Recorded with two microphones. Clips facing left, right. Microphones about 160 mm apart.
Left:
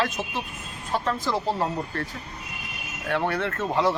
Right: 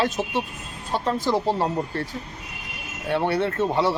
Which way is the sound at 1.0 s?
25° right (ahead or behind).